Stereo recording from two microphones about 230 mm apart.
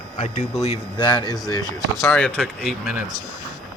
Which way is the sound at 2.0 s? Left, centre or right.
Centre.